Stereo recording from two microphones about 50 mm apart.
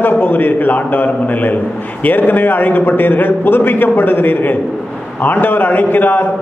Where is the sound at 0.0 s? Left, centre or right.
Left.